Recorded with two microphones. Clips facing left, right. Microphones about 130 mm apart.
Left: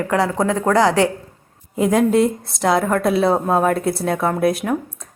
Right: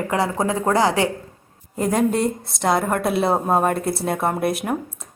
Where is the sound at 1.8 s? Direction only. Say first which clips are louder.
Left 4 dB; centre (ahead or behind).